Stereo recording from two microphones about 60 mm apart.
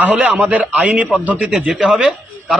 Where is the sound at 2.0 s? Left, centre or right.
Centre.